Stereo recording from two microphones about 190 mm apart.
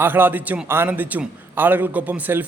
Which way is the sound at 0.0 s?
10° right (ahead or behind).